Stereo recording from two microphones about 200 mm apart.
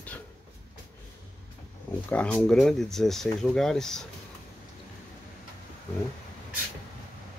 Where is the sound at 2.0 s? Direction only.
10° left (ahead or behind).